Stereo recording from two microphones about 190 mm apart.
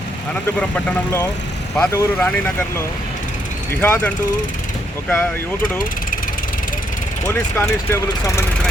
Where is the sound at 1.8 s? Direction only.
10° left (ahead or behind).